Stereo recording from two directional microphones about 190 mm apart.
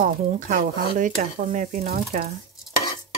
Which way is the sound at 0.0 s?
40° right (ahead or behind).